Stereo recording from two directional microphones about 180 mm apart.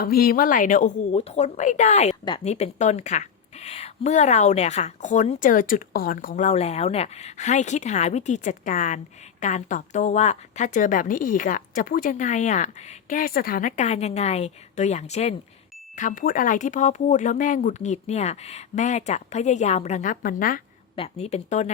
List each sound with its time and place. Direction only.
0.0 s a woman's voice: 55° left (ahead or behind)
20.9 s a woman's voice: 35° left (ahead or behind)